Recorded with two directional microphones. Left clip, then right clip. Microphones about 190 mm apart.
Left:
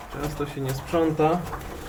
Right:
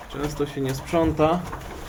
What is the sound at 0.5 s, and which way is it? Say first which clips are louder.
Speech: right 3 dB; 15° right (ahead or behind).